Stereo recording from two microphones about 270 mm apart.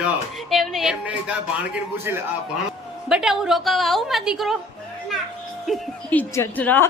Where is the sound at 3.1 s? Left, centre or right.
Centre.